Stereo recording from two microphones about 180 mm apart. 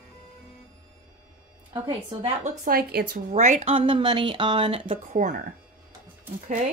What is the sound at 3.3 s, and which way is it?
Speech, 40° right (ahead or behind).